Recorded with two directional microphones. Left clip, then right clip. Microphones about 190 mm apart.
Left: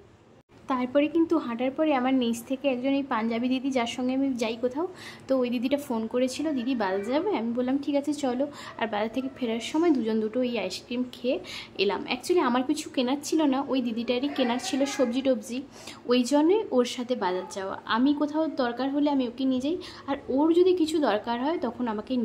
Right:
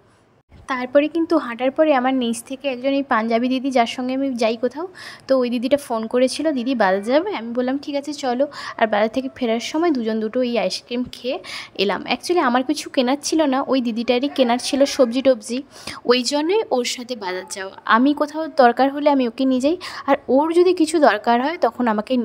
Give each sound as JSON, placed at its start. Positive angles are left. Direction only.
{"t": 0.7, "sound": "a woman's voice", "side_deg": -30}